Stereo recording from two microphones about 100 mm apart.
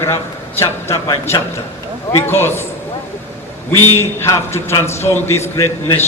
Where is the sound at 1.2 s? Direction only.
25° left (ahead or behind).